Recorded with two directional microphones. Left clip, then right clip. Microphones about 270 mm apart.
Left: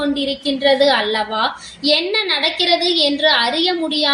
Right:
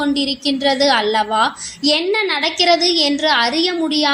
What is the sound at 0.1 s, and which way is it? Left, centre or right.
A woman's voice, right.